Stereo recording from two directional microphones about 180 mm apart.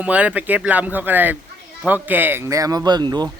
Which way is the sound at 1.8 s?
10° right (ahead or behind).